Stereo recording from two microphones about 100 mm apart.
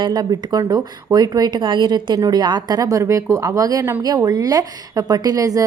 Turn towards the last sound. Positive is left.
turn(degrees=-35)  # may be behind; listen again after turning